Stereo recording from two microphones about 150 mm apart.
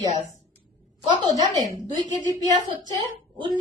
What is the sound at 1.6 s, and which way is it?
Speech, 30° right (ahead or behind).